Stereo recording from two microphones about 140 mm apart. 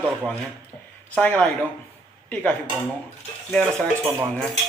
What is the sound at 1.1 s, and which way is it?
Speech, 10° left (ahead or behind).